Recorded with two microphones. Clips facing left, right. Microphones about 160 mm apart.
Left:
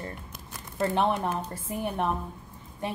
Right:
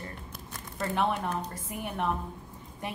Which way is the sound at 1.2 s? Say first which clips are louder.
Left 3 dB; 30° left (ahead or behind).